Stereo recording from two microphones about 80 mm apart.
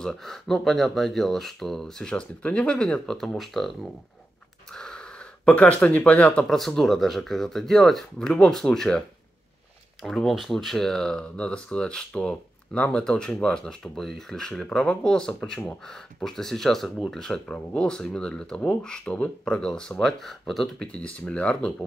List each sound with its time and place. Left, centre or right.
0.0 s speech: centre
6.5 s speech: centre
10.0 s speech: centre
20.9 s speech: centre